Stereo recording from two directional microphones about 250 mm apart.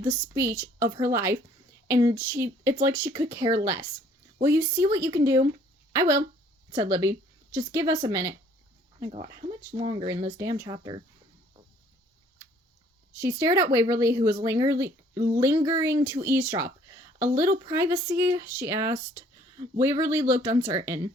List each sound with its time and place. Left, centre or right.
0.0 s speech: centre
9.7 s speech: right
13.1 s speech: centre